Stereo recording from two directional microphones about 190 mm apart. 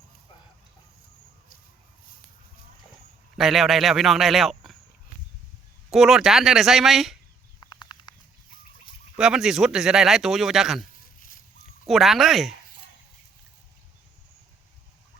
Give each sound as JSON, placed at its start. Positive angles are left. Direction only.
{"t": 3.3, "sound": "speech", "side_deg": 0}
{"t": 5.9, "sound": "speech", "side_deg": 0}
{"t": 7.8, "sound": "a sound", "side_deg": 25}
{"t": 9.1, "sound": "speech", "side_deg": -5}
{"t": 11.9, "sound": "speech", "side_deg": 0}